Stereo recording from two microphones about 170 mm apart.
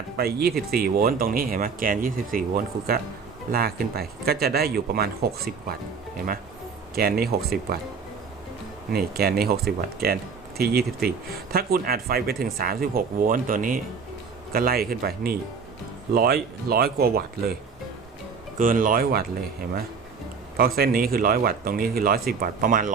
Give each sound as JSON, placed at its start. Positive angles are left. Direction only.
{"t": 0.2, "sound": "speech", "side_deg": -65}
{"t": 6.9, "sound": "speech", "side_deg": -65}
{"t": 9.1, "sound": "speech", "side_deg": -65}
{"t": 18.6, "sound": "speech", "side_deg": -55}